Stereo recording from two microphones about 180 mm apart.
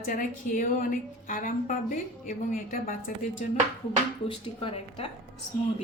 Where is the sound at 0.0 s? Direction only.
50° left (ahead or behind).